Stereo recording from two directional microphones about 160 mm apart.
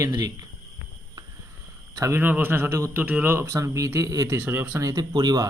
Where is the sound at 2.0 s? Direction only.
15° right (ahead or behind).